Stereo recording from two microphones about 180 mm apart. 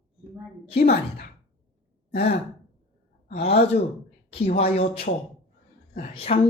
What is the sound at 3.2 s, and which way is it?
Speech, 35° left (ahead or behind).